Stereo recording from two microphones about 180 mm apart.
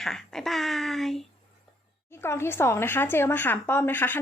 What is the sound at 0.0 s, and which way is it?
Speech, centre (ahead or behind).